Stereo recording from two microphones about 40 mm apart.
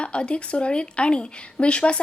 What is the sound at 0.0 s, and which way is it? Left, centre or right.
Speech, left.